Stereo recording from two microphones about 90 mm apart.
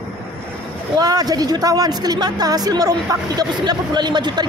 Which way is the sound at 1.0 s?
45° right (ahead or behind).